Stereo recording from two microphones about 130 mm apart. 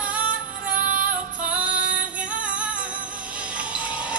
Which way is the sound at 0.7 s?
90° right.